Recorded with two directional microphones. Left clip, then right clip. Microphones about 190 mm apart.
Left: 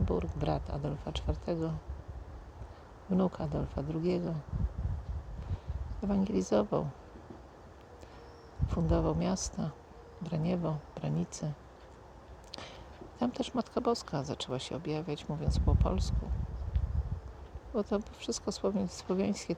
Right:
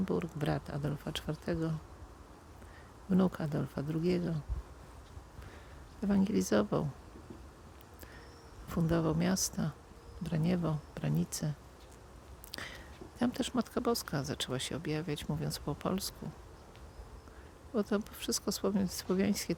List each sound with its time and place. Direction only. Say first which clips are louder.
0.0 s speech: left 1 dB; 20° right (ahead or behind)
3.1 s speech: even; 20° right (ahead or behind)
6.0 s speech: even; 20° right (ahead or behind)
8.6 s speech: left 1 dB; 20° right (ahead or behind)
12.5 s whispering: right 2 dB; 20° right (ahead or behind)
13.1 s speech: even; 20° right (ahead or behind)
17.7 s speech: left 1 dB; 20° right (ahead or behind)